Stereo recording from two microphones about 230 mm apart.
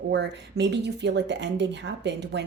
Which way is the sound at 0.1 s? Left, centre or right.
Right.